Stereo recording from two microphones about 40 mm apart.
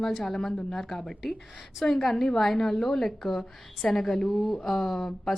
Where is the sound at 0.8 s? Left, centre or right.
Centre.